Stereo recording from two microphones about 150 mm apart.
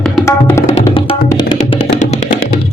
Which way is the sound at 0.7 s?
40° left (ahead or behind).